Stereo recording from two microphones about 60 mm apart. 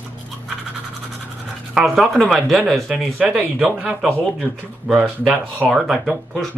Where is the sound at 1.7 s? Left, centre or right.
Centre.